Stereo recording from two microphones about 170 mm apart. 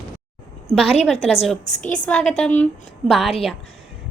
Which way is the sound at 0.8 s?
35° left (ahead or behind).